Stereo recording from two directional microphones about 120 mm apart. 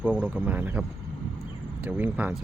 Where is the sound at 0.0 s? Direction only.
15° right (ahead or behind).